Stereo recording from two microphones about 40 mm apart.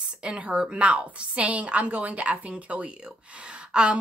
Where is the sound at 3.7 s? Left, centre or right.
Right.